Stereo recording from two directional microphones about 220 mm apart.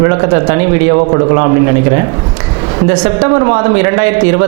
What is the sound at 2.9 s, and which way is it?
A man's voice, 20° right (ahead or behind).